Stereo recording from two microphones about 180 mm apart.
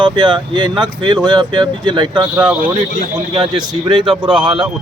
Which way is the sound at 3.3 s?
25° right (ahead or behind).